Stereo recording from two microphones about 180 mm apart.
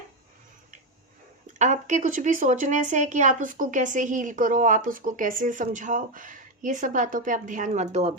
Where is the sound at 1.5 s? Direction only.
45° right (ahead or behind).